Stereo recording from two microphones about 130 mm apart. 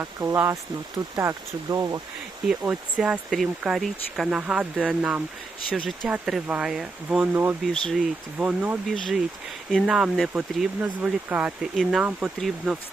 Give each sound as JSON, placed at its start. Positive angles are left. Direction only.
{"t": 0.0, "sound": "speech", "side_deg": -20}
{"t": 2.5, "sound": "speech", "side_deg": -5}
{"t": 5.6, "sound": "speech", "side_deg": 5}
{"t": 6.1, "sound": "speech", "side_deg": -5}
{"t": 7.6, "sound": "speech", "side_deg": 0}